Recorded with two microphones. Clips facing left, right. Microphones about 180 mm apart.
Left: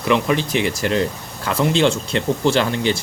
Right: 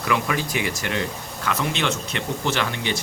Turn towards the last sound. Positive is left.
turn(degrees=30)  # may be behind; listen again after turning